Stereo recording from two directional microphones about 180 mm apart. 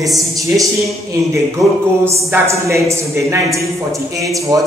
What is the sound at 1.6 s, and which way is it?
A man's voice, 15° right (ahead or behind).